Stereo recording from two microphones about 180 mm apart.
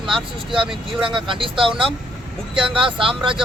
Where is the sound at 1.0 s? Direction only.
30° right (ahead or behind).